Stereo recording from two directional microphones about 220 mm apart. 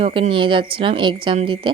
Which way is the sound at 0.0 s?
25° right (ahead or behind).